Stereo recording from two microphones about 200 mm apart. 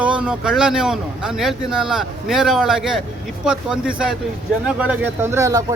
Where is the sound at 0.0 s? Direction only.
5° right (ahead or behind).